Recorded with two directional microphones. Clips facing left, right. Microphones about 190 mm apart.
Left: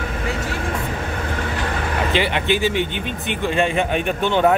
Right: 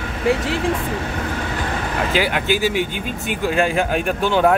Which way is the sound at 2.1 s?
5° right (ahead or behind).